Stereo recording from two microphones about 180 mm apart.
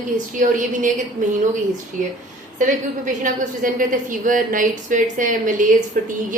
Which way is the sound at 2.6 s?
45° right (ahead or behind).